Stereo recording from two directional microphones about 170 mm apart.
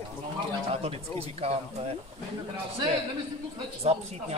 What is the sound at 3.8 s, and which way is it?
Speech, 40° right (ahead or behind).